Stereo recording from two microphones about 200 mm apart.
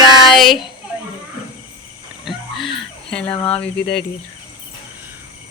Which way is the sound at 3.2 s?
30° left (ahead or behind).